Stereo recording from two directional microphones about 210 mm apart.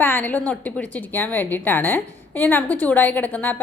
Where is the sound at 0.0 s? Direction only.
10° left (ahead or behind).